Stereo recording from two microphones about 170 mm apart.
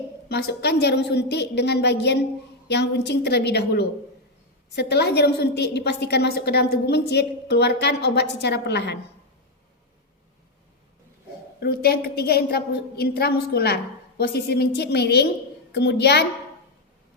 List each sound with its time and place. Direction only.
0.3 s a woman's voice: 70° left (ahead or behind)
11.6 s a woman's voice: 65° left (ahead or behind)